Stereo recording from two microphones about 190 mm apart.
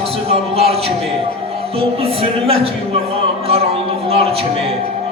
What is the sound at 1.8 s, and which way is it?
Speech, 30° right (ahead or behind).